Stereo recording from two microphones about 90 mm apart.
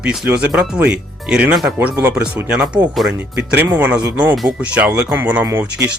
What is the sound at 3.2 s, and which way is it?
Speech, 20° right (ahead or behind).